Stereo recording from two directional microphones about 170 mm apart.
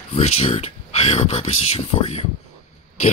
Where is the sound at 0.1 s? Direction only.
40° left (ahead or behind).